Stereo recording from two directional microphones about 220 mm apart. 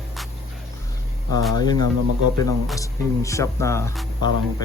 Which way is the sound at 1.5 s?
20° left (ahead or behind).